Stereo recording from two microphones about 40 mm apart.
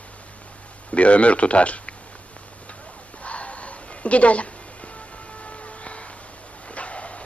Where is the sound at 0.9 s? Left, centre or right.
Left.